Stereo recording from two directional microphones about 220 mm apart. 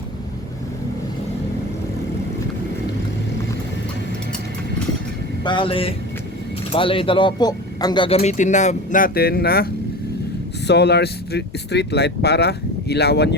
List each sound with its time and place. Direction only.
5.5 s speech: 25° left (ahead or behind); by 9.6 s 45° left (ahead or behind)
10.7 s speech: 50° left (ahead or behind)